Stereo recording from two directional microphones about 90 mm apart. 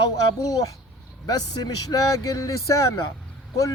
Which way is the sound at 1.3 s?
45° left (ahead or behind).